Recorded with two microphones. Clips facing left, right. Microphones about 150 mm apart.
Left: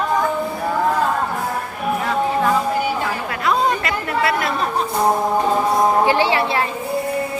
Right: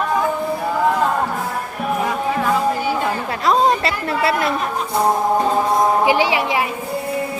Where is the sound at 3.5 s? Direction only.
30° right (ahead or behind).